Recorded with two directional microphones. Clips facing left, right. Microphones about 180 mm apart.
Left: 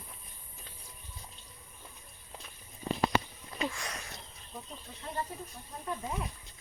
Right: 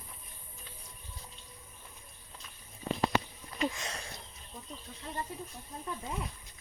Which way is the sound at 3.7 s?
25° right (ahead or behind).